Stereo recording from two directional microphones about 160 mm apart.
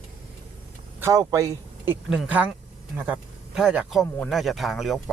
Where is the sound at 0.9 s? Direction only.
15° right (ahead or behind).